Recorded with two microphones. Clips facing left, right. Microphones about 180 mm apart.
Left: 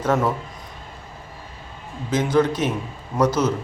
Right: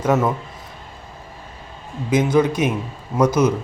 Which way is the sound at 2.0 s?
10° right (ahead or behind).